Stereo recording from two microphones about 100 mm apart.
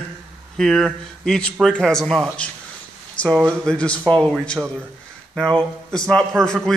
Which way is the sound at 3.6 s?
10° left (ahead or behind).